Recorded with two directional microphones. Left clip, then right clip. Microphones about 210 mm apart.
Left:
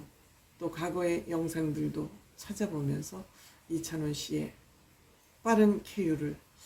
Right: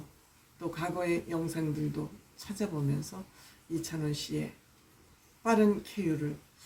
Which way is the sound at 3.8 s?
5° left (ahead or behind).